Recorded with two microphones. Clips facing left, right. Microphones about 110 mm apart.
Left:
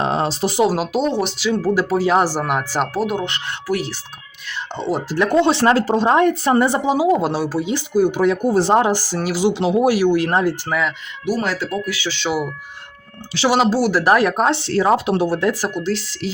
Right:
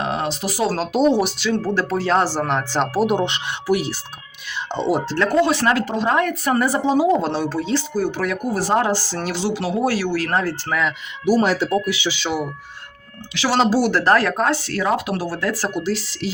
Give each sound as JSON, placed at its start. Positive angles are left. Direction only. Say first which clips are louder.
{"t": 0.0, "sound": "speech", "louder": "left 4 dB", "side_deg": 30}
{"t": 1.1, "sound": "speech", "louder": "right 2 dB", "side_deg": -5}
{"t": 1.5, "sound": "speech", "louder": "left 3 dB", "side_deg": 10}
{"t": 3.1, "sound": "speech", "louder": "right 3 dB", "side_deg": -20}
{"t": 5.0, "sound": "speech", "louder": "left 5 dB", "side_deg": 15}
{"t": 6.8, "sound": "speech", "louder": "left 1 dB", "side_deg": 5}
{"t": 9.5, "sound": "speech", "louder": "left 5 dB", "side_deg": 20}
{"t": 10.7, "sound": "speech", "louder": "left 1 dB", "side_deg": 5}
{"t": 11.4, "sound": "speech", "louder": "right 3 dB", "side_deg": -25}
{"t": 12.1, "sound": "speech", "louder": "left 2 dB", "side_deg": 0}
{"t": 13.7, "sound": "speech", "louder": "left 1 dB", "side_deg": 0}
{"t": 14.0, "sound": "speech", "louder": "left 2 dB", "side_deg": 15}
{"t": 15.7, "sound": "speech", "louder": "left 1 dB", "side_deg": -5}